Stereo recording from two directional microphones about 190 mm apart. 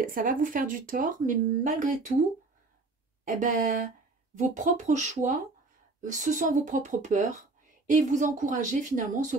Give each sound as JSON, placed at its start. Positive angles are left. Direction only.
{"t": 0.0, "sound": "speech", "side_deg": -45}
{"t": 3.3, "sound": "speech", "side_deg": -40}